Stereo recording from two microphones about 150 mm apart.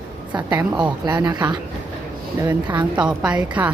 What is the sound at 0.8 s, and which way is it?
Speech, 30° right (ahead or behind).